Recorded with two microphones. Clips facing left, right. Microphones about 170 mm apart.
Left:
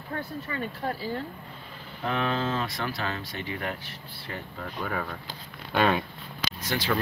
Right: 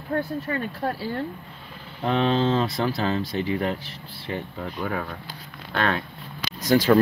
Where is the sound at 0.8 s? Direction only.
65° right (ahead or behind).